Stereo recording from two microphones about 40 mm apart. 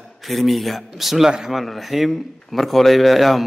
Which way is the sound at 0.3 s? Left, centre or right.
Centre.